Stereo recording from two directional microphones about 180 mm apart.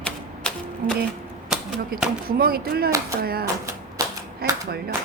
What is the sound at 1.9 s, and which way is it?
Speech, 55° right (ahead or behind).